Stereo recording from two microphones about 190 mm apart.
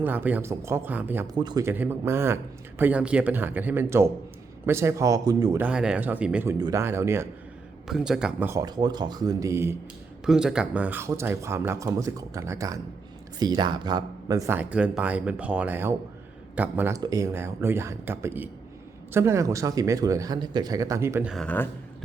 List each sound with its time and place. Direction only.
0.0 s speech: 10° right (ahead or behind)
1.3 s speech: 20° right (ahead or behind)
5.6 s speech: 5° right (ahead or behind)
7.9 s speech: centre (ahead or behind)
10.2 s speech: 5° right (ahead or behind)
21.3 s speech: 10° left (ahead or behind)